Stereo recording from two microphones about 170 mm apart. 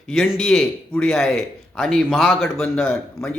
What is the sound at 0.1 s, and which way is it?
A man's voice, centre (ahead or behind).